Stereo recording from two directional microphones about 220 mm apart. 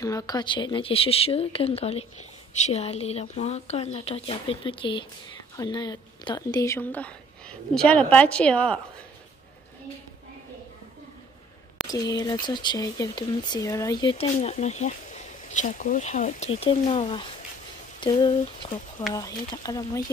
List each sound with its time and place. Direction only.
0.0 s speech: 15° left (ahead or behind)
11.9 s speech: 15° left (ahead or behind)